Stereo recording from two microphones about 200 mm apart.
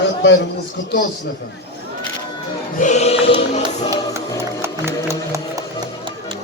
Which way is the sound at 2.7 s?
35° left (ahead or behind).